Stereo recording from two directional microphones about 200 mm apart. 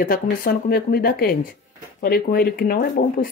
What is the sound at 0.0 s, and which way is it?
Speech, 45° left (ahead or behind).